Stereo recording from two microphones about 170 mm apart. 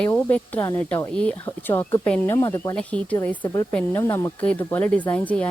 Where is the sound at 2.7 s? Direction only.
10° left (ahead or behind).